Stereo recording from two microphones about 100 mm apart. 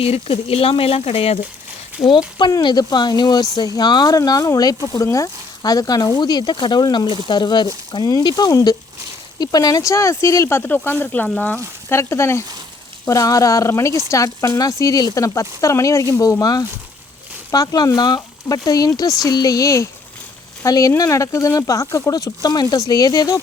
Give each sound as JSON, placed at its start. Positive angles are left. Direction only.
{"t": 0.0, "sound": "speech", "side_deg": 75}
{"t": 2.5, "sound": "speech", "side_deg": 45}